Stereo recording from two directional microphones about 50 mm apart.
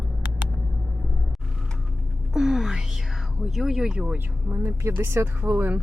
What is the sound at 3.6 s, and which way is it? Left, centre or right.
Speech, centre.